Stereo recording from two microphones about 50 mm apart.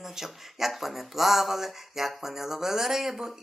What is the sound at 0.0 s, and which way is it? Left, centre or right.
Speech, centre.